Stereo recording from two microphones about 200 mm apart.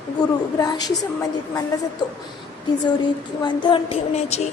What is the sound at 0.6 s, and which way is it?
Speech, 20° left (ahead or behind).